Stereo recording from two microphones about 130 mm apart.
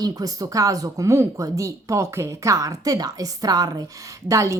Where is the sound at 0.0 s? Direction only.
30° right (ahead or behind).